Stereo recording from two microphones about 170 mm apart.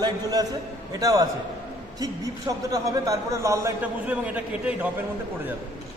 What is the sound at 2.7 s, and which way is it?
A man's voice, 20° right (ahead or behind).